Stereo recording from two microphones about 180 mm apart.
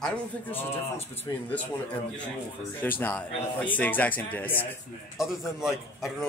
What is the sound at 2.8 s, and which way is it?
Speech, 10° left (ahead or behind).